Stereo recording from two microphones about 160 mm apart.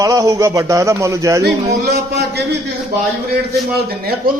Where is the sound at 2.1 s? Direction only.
90° right.